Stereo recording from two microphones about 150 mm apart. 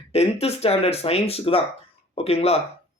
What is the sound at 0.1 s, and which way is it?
Speech, 45° left (ahead or behind).